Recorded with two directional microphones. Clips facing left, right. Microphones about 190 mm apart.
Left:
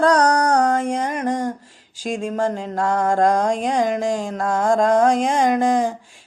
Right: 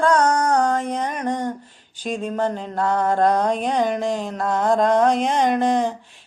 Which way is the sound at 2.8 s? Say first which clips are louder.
Left 1 dB; 45° left (ahead or behind).